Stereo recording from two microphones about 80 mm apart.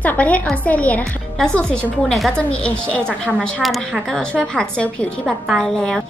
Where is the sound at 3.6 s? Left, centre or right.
Centre.